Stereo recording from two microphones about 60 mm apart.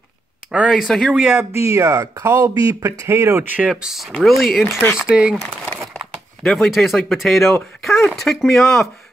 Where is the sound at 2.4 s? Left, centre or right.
Right.